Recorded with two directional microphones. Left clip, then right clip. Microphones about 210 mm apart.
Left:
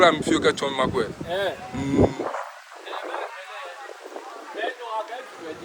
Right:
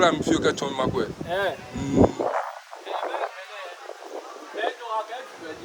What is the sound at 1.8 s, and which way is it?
Speech, 15° right (ahead or behind).